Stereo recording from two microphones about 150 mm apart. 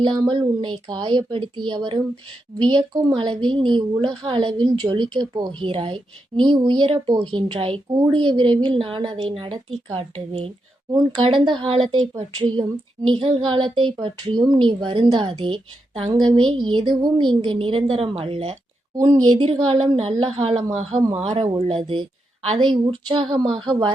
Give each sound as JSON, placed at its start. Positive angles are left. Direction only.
{"t": 0.0, "sound": "a woman's voice", "side_deg": -30}
{"t": 21.7, "sound": "a woman's voice", "side_deg": -35}